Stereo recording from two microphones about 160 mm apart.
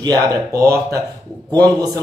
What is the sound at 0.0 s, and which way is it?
Speech, 25° right (ahead or behind).